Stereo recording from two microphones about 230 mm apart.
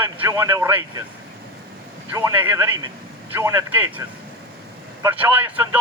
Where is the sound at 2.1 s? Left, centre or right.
Centre.